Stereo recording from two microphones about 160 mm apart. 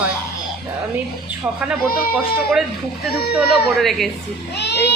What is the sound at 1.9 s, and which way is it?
Speech, 70° left (ahead or behind).